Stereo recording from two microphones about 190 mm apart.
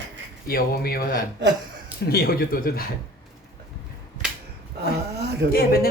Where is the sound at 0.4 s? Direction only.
50° left (ahead or behind).